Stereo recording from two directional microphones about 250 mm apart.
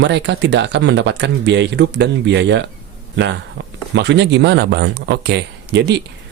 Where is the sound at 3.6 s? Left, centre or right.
Right.